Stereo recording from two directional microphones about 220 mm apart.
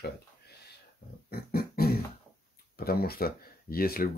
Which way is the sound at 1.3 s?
45° left (ahead or behind).